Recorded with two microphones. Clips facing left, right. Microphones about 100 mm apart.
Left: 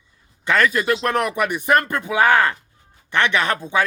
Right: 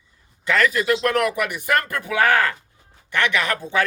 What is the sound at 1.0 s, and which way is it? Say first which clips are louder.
Speech: even; 25° left (ahead or behind).